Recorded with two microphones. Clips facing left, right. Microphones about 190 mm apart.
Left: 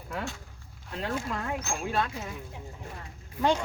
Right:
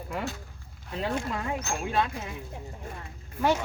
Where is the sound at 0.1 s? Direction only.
10° right (ahead or behind).